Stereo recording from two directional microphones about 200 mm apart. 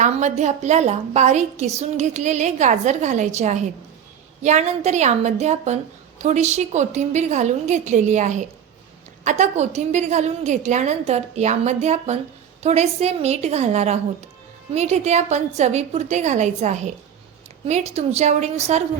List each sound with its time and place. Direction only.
0.0 s a woman's voice: 35° right (ahead or behind)